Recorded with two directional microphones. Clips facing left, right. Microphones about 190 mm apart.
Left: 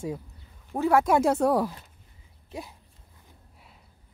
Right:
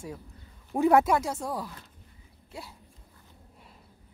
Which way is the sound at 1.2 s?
65° left (ahead or behind).